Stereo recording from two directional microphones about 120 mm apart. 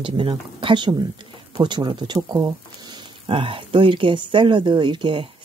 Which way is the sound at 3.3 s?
45° right (ahead or behind).